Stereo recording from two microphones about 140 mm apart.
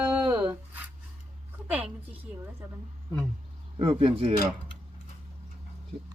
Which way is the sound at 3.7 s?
40° right (ahead or behind).